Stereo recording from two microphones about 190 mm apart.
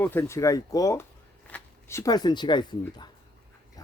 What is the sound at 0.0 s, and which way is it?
A man's voice, 15° left (ahead or behind).